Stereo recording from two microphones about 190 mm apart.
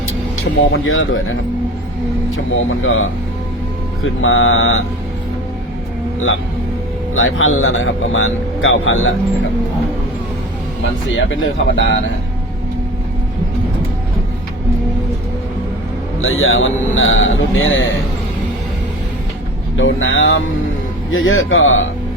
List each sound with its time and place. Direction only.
0.7 s speech: 90° left
7.1 s speech: 90° left
11.3 s speech: 80° left
16.2 s speech: 90° left
19.7 s speech: 90° left